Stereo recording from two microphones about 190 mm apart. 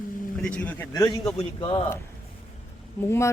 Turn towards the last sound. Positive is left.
turn(degrees=15)  # may be behind; listen again after turning